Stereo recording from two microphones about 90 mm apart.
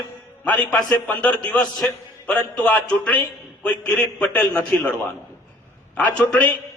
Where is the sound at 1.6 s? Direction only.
45° left (ahead or behind).